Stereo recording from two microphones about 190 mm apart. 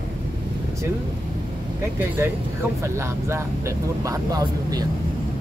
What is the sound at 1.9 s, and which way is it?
Speech, 10° right (ahead or behind).